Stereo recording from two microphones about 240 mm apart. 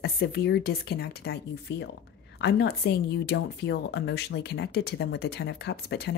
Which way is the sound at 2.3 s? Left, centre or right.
Left.